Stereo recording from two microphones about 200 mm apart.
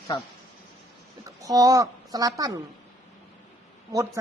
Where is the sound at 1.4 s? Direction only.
20° right (ahead or behind).